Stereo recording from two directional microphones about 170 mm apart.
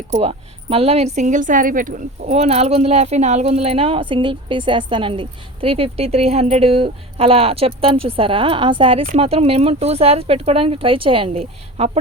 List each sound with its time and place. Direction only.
0.1 s a woman's voice: 35° right (ahead or behind)